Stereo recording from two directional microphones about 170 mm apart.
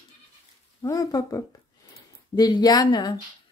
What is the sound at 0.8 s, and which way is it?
Speech, 20° left (ahead or behind).